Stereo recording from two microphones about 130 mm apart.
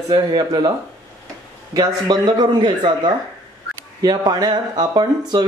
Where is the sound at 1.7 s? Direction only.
30° right (ahead or behind).